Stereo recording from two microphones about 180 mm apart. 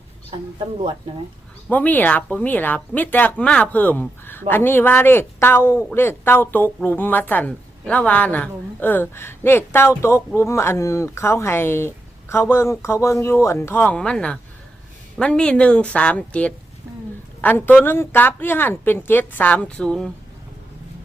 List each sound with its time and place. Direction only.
1.7 s a woman's voice: 10° left (ahead or behind)